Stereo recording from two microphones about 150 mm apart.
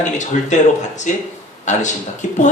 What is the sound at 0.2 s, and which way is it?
Speech, 55° left (ahead or behind).